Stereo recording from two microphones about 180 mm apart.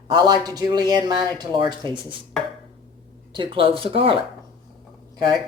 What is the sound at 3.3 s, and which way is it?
Speech, 30° right (ahead or behind).